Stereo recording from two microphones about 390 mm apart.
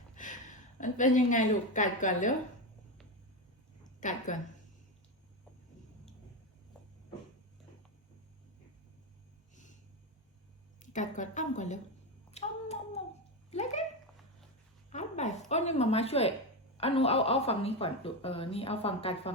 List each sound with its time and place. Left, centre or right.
0.2 s a sound: centre
0.8 s a woman's voice: centre
4.0 s a woman's voice: centre
10.8 s a woman's voice: centre
12.3 s a sound: centre
13.5 s speech: centre
14.8 s speech: centre